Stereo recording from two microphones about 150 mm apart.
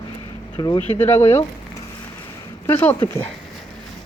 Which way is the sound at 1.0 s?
20° left (ahead or behind).